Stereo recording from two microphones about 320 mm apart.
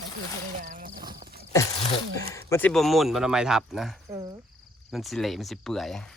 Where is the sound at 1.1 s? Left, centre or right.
Right.